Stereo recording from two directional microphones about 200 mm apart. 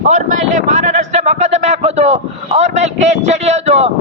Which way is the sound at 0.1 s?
35° right (ahead or behind).